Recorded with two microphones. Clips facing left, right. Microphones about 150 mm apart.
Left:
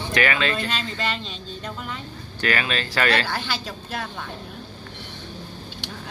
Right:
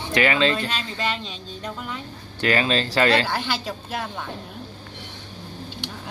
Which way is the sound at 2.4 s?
25° right (ahead or behind).